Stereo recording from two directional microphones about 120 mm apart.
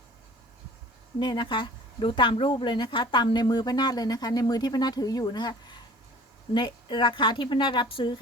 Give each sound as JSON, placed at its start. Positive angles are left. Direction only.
{"t": 1.2, "sound": "speech", "side_deg": 40}